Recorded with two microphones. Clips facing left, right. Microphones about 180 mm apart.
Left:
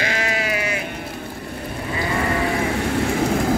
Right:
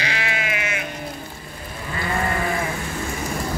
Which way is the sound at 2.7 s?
70° left (ahead or behind).